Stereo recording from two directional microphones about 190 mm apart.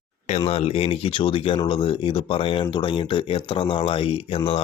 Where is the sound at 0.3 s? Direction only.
30° left (ahead or behind).